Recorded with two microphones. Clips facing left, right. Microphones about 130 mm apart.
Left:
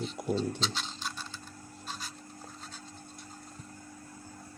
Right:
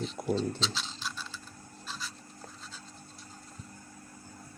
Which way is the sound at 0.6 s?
45° left (ahead or behind).